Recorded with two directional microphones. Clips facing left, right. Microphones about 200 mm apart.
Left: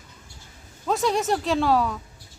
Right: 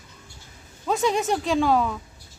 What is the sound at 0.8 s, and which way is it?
Speech, centre (ahead or behind).